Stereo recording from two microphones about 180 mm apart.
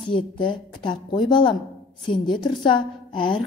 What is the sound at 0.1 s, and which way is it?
A woman's voice, 25° left (ahead or behind).